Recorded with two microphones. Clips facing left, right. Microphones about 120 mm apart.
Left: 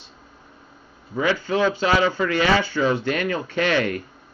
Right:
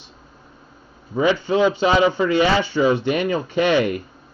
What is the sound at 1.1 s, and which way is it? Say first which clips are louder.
Speech: right 4 dB; 20° right (ahead or behind).